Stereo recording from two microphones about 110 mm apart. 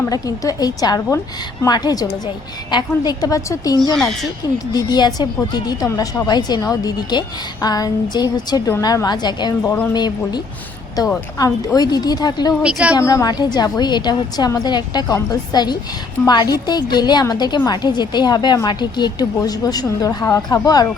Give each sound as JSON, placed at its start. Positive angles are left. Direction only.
{"t": 0.1, "sound": "speech", "side_deg": 35}
{"t": 3.9, "sound": "speech", "side_deg": 5}
{"t": 4.5, "sound": "speech", "side_deg": 35}
{"t": 9.6, "sound": "speech", "side_deg": 15}
{"t": 9.9, "sound": "speech", "side_deg": 40}
{"t": 12.6, "sound": "a woman's voice", "side_deg": -10}
{"t": 13.0, "sound": "speech", "side_deg": 30}